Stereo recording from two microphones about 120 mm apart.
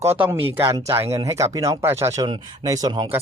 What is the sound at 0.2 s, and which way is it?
Speech, 15° right (ahead or behind).